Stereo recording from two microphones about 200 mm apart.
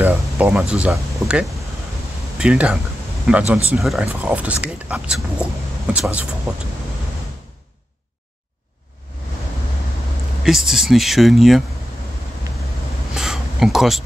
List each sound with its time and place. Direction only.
0.0 s speech: 10° right (ahead or behind)
10.4 s speech: centre (ahead or behind)
13.1 s a sound: centre (ahead or behind)